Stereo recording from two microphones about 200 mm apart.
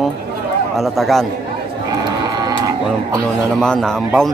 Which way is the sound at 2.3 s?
20° right (ahead or behind).